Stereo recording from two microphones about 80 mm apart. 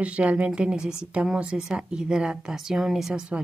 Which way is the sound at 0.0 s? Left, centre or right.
Centre.